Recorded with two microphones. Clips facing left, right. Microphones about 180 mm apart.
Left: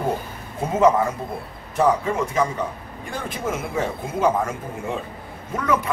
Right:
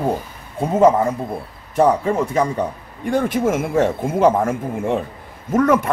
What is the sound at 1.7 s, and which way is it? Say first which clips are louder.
Speech: right 4 dB; 35° right (ahead or behind).